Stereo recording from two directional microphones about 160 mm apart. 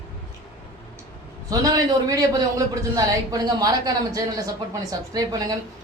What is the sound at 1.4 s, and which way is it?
Speech, 20° right (ahead or behind).